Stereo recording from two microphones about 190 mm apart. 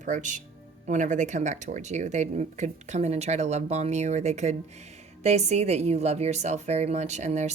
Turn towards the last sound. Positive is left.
turn(degrees=-35)  # may be behind; listen again after turning